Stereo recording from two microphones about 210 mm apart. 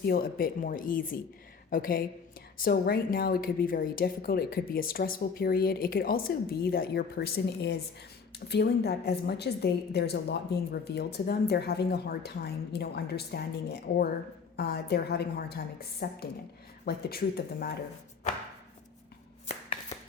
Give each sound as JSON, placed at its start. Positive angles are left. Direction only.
{"t": 0.0, "sound": "a woman's voice", "side_deg": 45}